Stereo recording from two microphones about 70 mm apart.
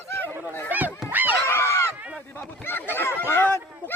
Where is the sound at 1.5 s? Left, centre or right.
Left.